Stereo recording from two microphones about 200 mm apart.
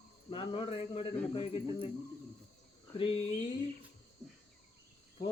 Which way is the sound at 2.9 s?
25° left (ahead or behind).